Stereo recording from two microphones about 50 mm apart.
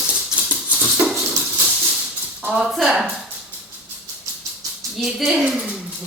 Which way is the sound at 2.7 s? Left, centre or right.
Centre.